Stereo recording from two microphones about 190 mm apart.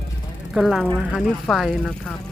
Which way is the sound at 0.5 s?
Centre (ahead or behind).